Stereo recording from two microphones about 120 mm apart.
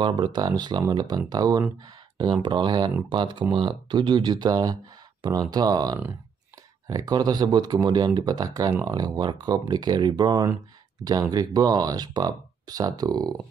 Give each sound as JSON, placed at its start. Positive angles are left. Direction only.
{"t": 0.0, "sound": "speech", "side_deg": -35}